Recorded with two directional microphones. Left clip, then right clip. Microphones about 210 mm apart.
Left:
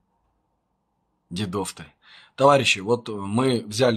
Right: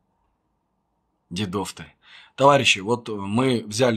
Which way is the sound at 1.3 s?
5° right (ahead or behind).